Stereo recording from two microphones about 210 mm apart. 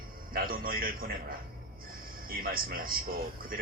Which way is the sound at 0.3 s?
45° right (ahead or behind).